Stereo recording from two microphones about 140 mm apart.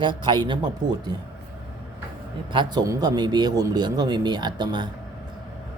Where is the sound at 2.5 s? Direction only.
30° right (ahead or behind).